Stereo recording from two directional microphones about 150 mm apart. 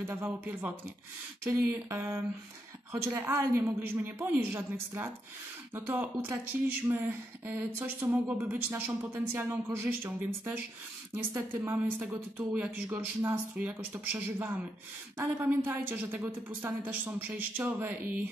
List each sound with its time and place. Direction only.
0.0 s speech: 15° right (ahead or behind)